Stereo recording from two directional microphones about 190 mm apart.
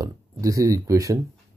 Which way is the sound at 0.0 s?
15° right (ahead or behind).